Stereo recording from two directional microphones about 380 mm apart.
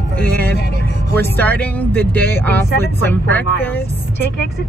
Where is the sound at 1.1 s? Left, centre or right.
Centre.